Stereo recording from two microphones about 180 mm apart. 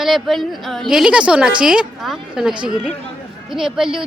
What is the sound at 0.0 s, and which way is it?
Speech, centre (ahead or behind).